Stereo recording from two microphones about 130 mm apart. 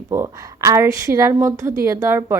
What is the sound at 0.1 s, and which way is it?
A woman's voice, 25° right (ahead or behind).